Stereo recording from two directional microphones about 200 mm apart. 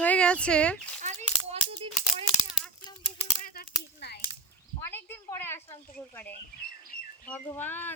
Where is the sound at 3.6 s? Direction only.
55° left (ahead or behind).